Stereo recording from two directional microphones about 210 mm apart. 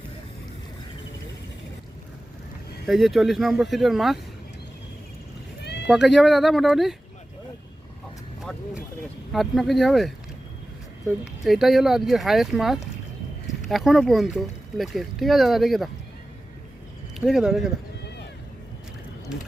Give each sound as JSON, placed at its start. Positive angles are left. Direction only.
{"t": 2.8, "sound": "speech", "side_deg": 0}
{"t": 5.6, "sound": "horse", "side_deg": 55}
{"t": 5.9, "sound": "speech", "side_deg": 0}
{"t": 9.3, "sound": "speech", "side_deg": 0}
{"t": 11.4, "sound": "speech", "side_deg": 0}
{"t": 17.2, "sound": "speech", "side_deg": 0}